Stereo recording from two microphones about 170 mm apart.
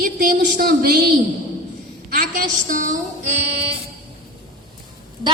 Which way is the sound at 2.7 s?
50° right (ahead or behind).